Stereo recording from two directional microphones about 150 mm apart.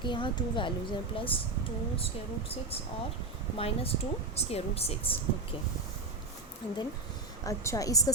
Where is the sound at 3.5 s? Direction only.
40° left (ahead or behind).